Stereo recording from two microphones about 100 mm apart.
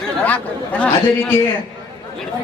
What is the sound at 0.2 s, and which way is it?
Speech, 15° left (ahead or behind).